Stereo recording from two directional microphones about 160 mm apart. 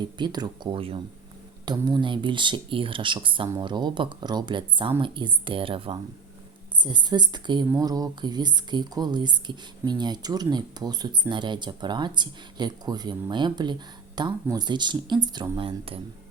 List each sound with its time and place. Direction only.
0.0 s speech: 25° right (ahead or behind)